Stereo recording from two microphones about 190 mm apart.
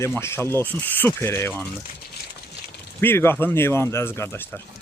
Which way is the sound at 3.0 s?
10° left (ahead or behind).